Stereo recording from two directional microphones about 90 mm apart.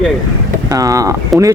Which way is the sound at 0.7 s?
40° right (ahead or behind).